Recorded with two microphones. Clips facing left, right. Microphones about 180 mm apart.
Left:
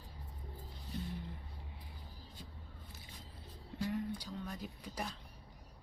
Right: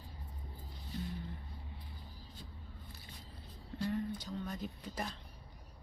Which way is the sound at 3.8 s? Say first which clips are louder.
Right 1 dB; 10° left (ahead or behind).